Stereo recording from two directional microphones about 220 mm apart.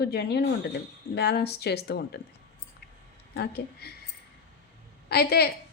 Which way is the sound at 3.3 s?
50° left (ahead or behind).